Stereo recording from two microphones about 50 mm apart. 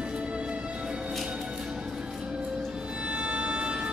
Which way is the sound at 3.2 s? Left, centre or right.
Right.